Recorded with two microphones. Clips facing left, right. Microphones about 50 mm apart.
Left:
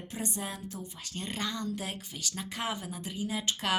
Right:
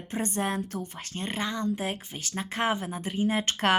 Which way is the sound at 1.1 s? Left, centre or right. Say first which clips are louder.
Right 4 dB; right.